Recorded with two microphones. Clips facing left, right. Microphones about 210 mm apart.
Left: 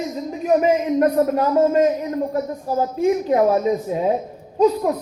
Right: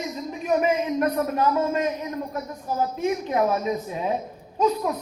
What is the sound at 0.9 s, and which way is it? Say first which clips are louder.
A man's voice: left 6 dB; 35° left (ahead or behind).